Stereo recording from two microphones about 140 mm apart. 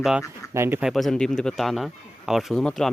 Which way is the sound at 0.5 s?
20° right (ahead or behind).